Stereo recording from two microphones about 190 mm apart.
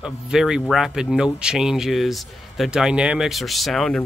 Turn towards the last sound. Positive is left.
turn(degrees=0)  # may be behind; listen again after turning